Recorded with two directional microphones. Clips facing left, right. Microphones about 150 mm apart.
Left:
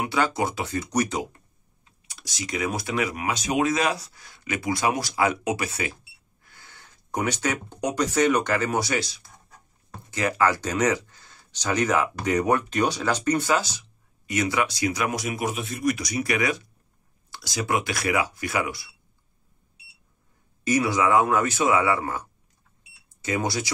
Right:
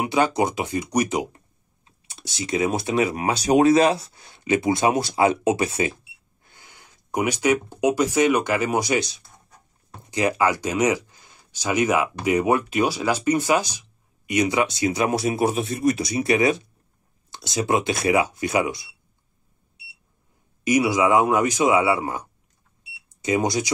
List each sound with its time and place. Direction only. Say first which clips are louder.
0.0 s speech: right 4 dB; 20° right (ahead or behind)
1.9 s speech: right 4 dB; 25° right (ahead or behind)
20.6 s speech: right 3 dB; 15° right (ahead or behind)